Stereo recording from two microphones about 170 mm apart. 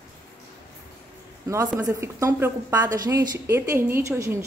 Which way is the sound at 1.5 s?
15° right (ahead or behind).